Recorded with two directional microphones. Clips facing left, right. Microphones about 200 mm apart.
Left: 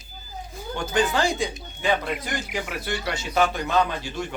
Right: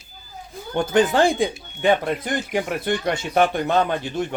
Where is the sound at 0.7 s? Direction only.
55° right (ahead or behind).